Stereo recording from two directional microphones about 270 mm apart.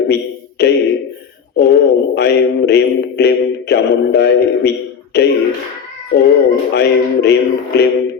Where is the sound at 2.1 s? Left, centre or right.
Left.